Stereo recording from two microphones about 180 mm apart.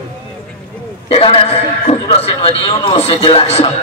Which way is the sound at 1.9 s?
30° left (ahead or behind).